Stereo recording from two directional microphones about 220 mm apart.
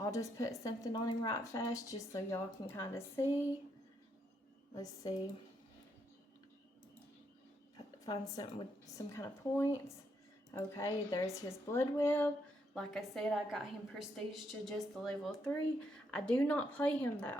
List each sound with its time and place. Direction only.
0.0 s a woman's voice: 15° left (ahead or behind)
4.7 s speech: 15° left (ahead or behind)
8.4 s speech: 15° left (ahead or behind)